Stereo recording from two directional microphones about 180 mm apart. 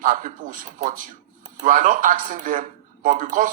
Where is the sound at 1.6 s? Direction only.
45° right (ahead or behind).